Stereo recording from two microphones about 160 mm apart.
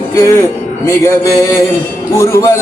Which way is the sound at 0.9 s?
20° left (ahead or behind).